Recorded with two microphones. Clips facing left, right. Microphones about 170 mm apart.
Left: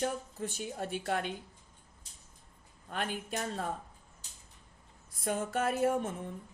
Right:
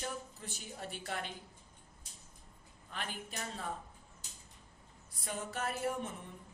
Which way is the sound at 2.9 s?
45° left (ahead or behind).